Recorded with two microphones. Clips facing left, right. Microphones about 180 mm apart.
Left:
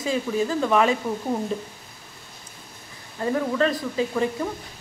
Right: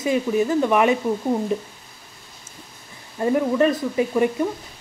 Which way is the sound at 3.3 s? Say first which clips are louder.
Right 4 dB; 20° right (ahead or behind).